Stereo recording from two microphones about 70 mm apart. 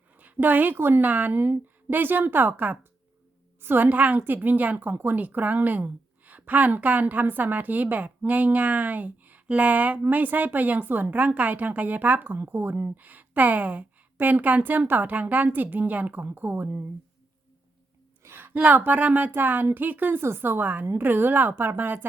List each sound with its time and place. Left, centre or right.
0.2 s a woman's voice: right
18.2 s a woman's voice: right